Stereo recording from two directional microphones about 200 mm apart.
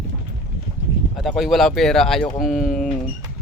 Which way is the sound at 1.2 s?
Centre (ahead or behind).